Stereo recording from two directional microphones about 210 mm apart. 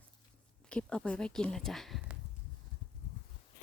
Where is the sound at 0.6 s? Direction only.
5° left (ahead or behind).